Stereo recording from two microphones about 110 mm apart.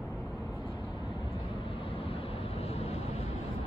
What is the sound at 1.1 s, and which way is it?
Vehicle, 60° left (ahead or behind).